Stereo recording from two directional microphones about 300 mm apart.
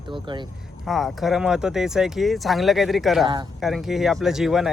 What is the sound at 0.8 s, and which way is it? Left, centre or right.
Speech, centre.